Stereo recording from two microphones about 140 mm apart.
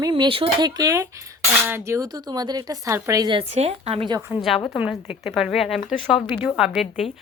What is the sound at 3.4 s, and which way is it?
Speech, 50° right (ahead or behind).